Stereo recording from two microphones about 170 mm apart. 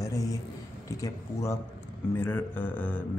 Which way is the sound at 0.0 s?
20° left (ahead or behind).